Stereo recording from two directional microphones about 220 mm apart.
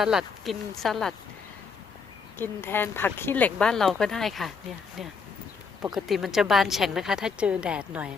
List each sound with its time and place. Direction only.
0.0 s speech: centre (ahead or behind)
2.4 s speech: 10° left (ahead or behind)
5.9 s speech: centre (ahead or behind)